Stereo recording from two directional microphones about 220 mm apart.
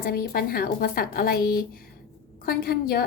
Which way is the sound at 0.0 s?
45° left (ahead or behind).